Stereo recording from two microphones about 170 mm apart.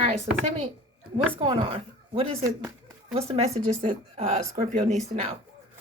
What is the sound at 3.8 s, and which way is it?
Speech, 45° right (ahead or behind).